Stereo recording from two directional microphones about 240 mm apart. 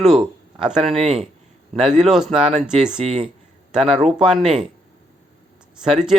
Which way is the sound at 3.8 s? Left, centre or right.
Right.